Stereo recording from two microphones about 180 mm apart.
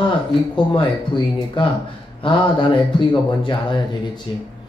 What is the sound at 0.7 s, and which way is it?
Speech, 25° left (ahead or behind).